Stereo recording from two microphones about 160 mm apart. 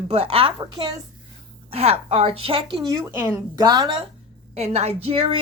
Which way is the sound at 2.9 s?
15° right (ahead or behind).